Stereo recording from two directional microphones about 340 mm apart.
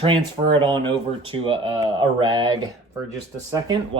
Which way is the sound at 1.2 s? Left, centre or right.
Centre.